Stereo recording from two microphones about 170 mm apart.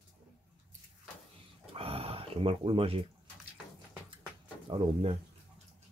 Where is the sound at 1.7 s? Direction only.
35° right (ahead or behind).